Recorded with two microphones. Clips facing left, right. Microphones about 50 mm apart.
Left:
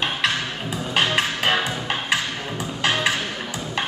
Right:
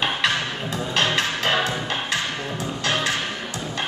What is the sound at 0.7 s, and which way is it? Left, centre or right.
Music, centre.